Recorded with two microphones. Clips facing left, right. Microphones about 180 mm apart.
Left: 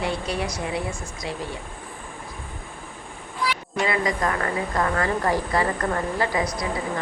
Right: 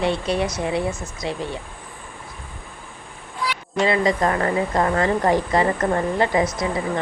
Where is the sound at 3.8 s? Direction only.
30° right (ahead or behind).